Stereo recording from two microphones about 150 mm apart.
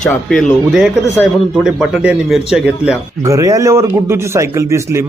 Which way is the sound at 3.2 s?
20° right (ahead or behind).